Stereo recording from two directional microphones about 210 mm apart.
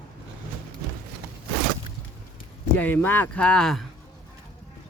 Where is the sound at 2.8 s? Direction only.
10° left (ahead or behind).